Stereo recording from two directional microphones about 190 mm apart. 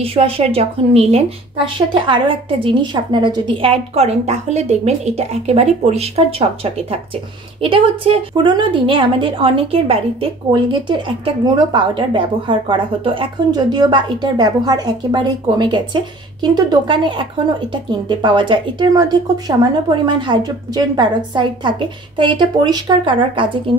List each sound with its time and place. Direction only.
0.0 s a woman's voice: 30° right (ahead or behind)